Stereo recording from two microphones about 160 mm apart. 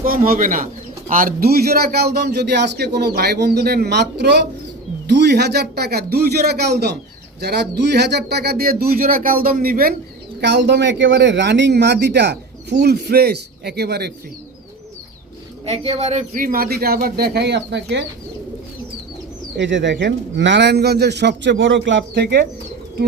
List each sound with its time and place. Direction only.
0.0 s a man's voice: 65° right (ahead or behind)
10.4 s a man's voice: 90° right
15.6 s speech: 40° right (ahead or behind); by 18.0 s 90° right
19.5 s a man's voice: 90° right